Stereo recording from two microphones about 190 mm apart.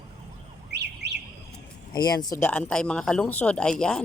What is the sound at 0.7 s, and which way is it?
Bird, 60° right (ahead or behind).